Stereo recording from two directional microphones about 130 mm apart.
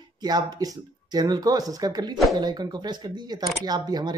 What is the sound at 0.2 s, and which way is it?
Speech, 30° right (ahead or behind).